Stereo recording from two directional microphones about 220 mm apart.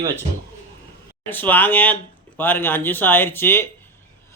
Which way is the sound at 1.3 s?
10° left (ahead or behind).